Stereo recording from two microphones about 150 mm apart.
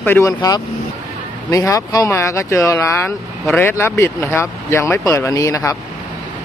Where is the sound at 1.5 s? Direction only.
20° left (ahead or behind).